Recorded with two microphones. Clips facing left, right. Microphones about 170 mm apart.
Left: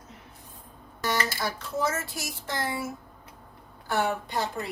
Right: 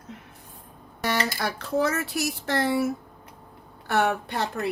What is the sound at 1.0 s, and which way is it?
Speech, 65° right (ahead or behind).